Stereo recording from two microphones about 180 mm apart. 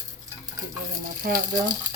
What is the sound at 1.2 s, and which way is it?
Frying, 50° right (ahead or behind).